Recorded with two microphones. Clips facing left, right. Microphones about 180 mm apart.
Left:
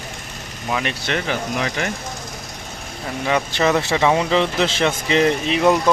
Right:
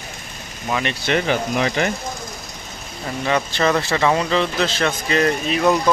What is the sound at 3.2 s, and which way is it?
Speech, 5° left (ahead or behind).